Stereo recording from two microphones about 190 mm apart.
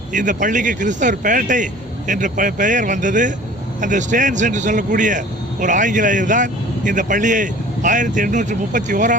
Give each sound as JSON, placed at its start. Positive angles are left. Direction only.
{"t": 0.1, "sound": "speech", "side_deg": -40}